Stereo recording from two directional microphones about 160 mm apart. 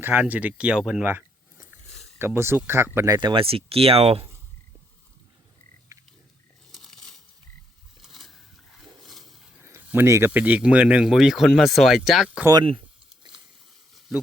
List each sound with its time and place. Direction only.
0.0 s speech: 10° right (ahead or behind)
3.2 s speech: 30° right (ahead or behind)
6.7 s a sound: centre (ahead or behind)
9.6 s speech: 15° right (ahead or behind)
12.5 s speech: 30° right (ahead or behind)